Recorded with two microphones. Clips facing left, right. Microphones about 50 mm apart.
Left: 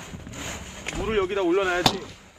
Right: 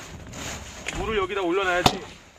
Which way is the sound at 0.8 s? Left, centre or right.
Centre.